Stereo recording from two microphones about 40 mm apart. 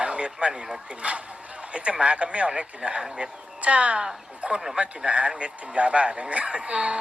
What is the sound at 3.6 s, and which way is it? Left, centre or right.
Speech, right.